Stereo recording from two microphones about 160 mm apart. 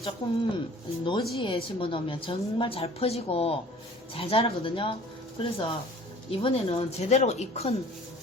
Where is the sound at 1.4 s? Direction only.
30° left (ahead or behind).